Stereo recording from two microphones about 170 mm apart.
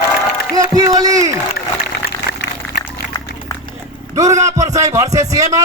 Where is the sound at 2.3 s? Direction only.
70° left (ahead or behind).